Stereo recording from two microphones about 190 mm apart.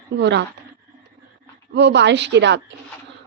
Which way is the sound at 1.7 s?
65° right (ahead or behind).